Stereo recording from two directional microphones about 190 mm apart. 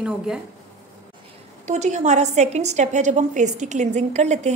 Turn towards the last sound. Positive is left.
turn(degrees=-35)  # may be behind; listen again after turning